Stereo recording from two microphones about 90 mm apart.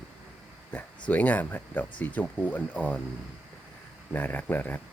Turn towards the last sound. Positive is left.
turn(degrees=20)  # may be behind; listen again after turning